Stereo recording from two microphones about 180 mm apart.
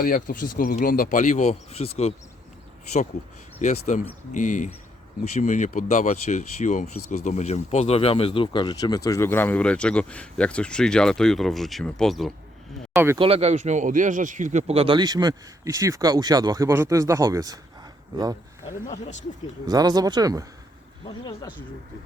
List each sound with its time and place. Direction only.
0.0 s speech: 50° left (ahead or behind); by 2.1 s 35° left (ahead or behind)
3.6 s speech: 45° left (ahead or behind); by 12.3 s centre (ahead or behind)
13.1 s speech: 30° right (ahead or behind)